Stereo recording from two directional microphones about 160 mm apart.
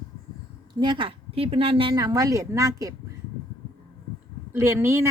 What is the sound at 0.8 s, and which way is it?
A woman's voice, 30° right (ahead or behind).